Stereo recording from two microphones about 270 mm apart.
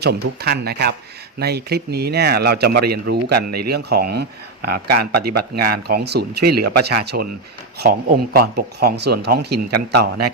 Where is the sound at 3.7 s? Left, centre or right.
Right.